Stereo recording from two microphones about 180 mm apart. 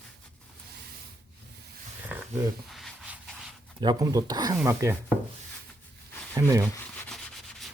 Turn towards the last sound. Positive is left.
turn(degrees=-15)  # may be behind; listen again after turning